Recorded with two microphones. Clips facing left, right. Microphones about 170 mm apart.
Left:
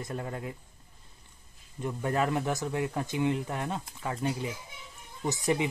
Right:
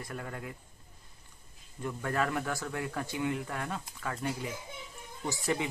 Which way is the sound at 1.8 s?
20° left (ahead or behind).